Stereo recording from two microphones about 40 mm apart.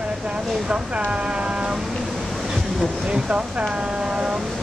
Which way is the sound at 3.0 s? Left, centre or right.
Centre.